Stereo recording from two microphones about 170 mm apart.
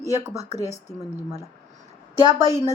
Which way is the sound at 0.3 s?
40° right (ahead or behind).